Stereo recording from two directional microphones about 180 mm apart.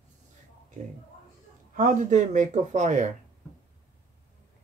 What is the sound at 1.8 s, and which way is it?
Speech, 45° right (ahead or behind).